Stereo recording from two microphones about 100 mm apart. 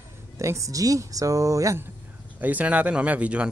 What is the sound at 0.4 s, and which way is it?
Speech, 30° right (ahead or behind).